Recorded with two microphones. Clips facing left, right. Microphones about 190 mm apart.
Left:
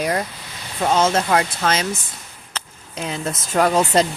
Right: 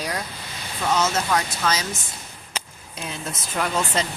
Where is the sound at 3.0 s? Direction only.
90° left.